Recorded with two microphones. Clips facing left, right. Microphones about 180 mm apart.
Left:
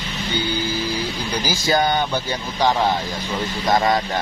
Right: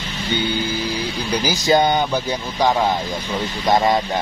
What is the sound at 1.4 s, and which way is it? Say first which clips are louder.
Speech: right 3 dB; 20° right (ahead or behind).